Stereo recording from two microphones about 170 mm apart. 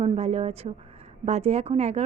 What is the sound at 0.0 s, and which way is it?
A woman's voice, 35° right (ahead or behind).